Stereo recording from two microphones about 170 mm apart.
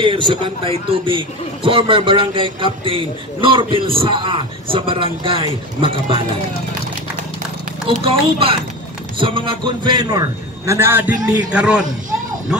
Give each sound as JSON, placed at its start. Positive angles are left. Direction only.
{"t": 0.0, "sound": "a man's voice", "side_deg": -30}
{"t": 8.0, "sound": "a man's voice", "side_deg": -35}